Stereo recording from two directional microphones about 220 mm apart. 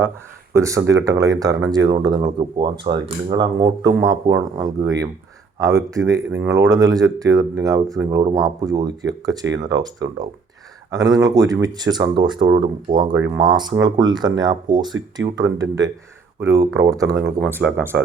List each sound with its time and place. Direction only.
0.5 s speech: 15° right (ahead or behind)